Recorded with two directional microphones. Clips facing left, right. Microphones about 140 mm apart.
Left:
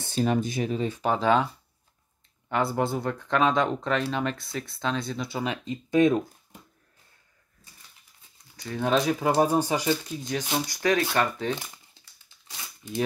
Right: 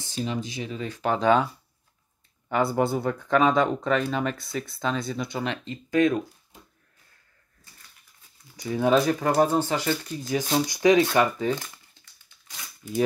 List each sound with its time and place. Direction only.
0.0 s speech: 55° left (ahead or behind)
1.0 s speech: centre (ahead or behind)
2.5 s speech: centre (ahead or behind)
5.9 s speech: 20° left (ahead or behind)
8.5 s speech: 10° right (ahead or behind)
9.4 s speech: 15° left (ahead or behind)
10.1 s speech: 5° right (ahead or behind)
10.7 s speech: 15° right (ahead or behind)
11.1 s speech: 5° right (ahead or behind)
11.5 s speech: 15° left (ahead or behind)